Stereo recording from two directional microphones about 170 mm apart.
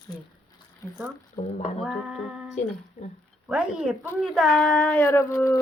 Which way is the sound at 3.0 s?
45° left (ahead or behind).